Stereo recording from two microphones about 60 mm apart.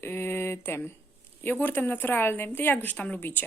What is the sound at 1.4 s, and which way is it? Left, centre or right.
A woman's voice, left.